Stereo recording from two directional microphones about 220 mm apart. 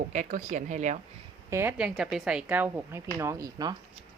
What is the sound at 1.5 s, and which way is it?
Speech, 10° right (ahead or behind).